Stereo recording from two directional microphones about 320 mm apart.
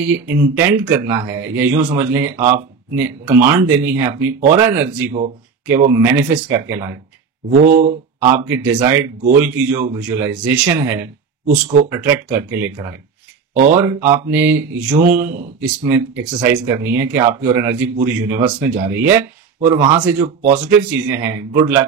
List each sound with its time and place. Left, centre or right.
0.1 s a man's voice: centre
8.3 s a man's voice: centre
13.5 s a sound: right
14.1 s a man's voice: centre